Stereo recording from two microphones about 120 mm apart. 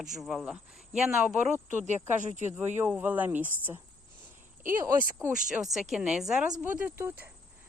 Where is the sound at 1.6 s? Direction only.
85° right.